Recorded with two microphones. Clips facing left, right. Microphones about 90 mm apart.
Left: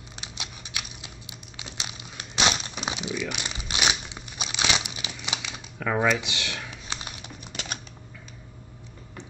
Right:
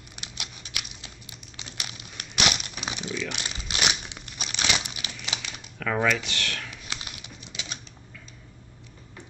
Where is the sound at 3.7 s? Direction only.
10° left (ahead or behind).